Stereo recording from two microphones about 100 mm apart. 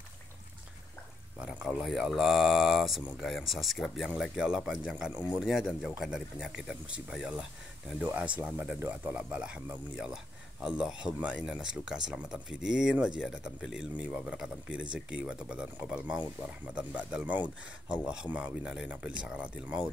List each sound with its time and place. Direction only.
1.4 s speech: 10° right (ahead or behind)